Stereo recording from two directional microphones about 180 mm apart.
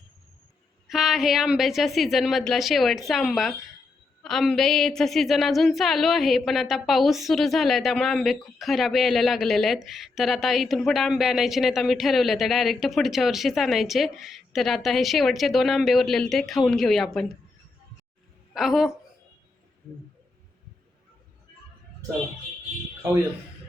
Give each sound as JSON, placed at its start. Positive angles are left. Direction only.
{"t": 0.9, "sound": "a woman's voice", "side_deg": 0}
{"t": 18.5, "sound": "a woman's voice", "side_deg": 0}